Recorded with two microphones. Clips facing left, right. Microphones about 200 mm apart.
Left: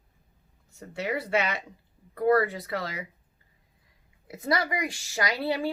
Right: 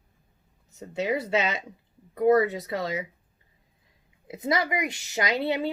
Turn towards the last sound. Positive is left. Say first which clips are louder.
# right 2 dB
turn(degrees=-20)  # may be behind; listen again after turning